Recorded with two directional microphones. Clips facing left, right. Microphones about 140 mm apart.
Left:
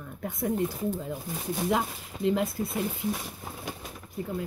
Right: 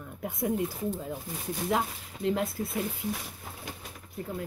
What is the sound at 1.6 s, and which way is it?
Speech, centre (ahead or behind).